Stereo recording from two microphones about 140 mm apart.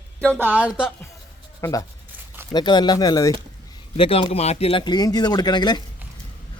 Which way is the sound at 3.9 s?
45° left (ahead or behind).